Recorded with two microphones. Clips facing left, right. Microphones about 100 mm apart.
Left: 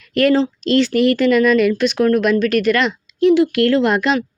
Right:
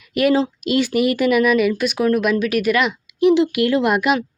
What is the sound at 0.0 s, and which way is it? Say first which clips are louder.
Speech: left 2 dB; 10° right (ahead or behind).